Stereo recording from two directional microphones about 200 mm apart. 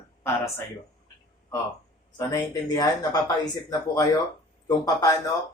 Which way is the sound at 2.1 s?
15° left (ahead or behind).